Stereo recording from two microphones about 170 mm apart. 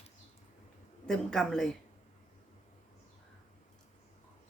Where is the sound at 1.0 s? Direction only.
5° left (ahead or behind).